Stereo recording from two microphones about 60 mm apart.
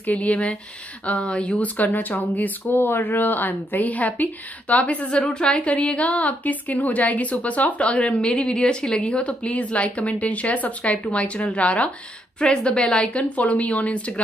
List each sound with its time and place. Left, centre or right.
0.0 s a woman's voice: left